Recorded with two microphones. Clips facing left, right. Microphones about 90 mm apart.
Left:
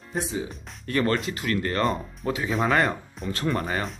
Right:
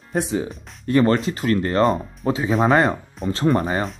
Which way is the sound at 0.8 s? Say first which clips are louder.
Right 7 dB; 25° right (ahead or behind).